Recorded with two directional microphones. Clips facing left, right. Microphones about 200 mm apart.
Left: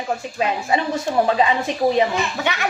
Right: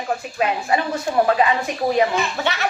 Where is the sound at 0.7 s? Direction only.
25° left (ahead or behind).